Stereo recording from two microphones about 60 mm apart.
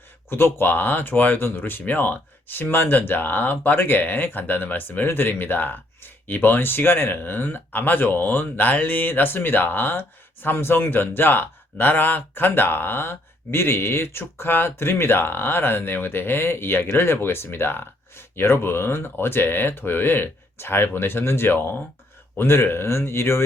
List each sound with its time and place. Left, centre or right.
0.3 s speech: left